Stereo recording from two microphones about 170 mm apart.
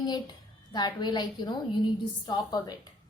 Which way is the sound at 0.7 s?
25° left (ahead or behind).